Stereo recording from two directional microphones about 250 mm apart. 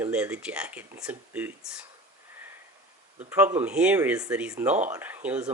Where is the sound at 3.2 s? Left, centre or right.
Centre.